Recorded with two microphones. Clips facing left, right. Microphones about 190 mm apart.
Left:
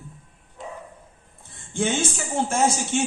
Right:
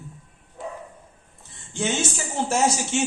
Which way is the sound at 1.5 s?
55° left (ahead or behind).